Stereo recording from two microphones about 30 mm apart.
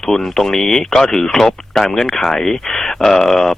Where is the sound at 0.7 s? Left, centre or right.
Centre.